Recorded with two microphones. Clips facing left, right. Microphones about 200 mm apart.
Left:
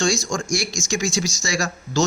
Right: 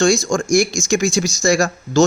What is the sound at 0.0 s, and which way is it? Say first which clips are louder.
Speech: right 7 dB; 50° right (ahead or behind).